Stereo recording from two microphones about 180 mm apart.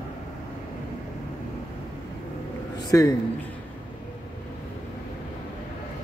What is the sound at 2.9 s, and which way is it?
Speech, 15° left (ahead or behind).